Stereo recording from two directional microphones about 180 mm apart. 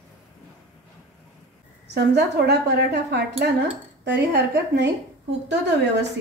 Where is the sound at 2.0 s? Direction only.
65° right (ahead or behind).